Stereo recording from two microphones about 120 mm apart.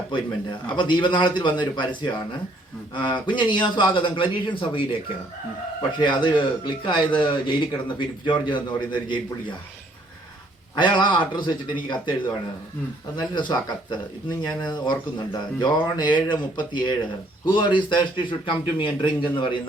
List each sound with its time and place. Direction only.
0.7 s speech: 40° left (ahead or behind)
3.2 s a man's voice: 40° left (ahead or behind)
6.0 s speech: 40° left (ahead or behind)
10.8 s a man's voice: 40° left (ahead or behind)